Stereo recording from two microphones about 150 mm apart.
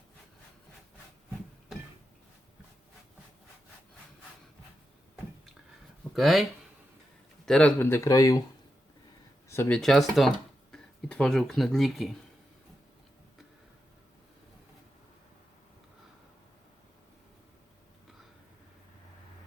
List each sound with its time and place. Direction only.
6.1 s speech: centre (ahead or behind); by 8.4 s 25° left (ahead or behind)
9.5 s speech: 15° left (ahead or behind)
9.7 s speech: centre (ahead or behind)